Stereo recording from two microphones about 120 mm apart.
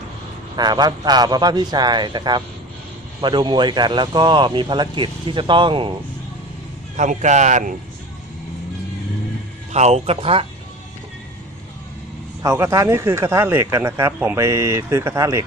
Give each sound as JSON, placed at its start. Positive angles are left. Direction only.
{"t": 0.5, "sound": "speech", "side_deg": -35}
{"t": 6.9, "sound": "speech", "side_deg": -90}
{"t": 9.7, "sound": "speech", "side_deg": -65}
{"t": 12.4, "sound": "speech", "side_deg": -25}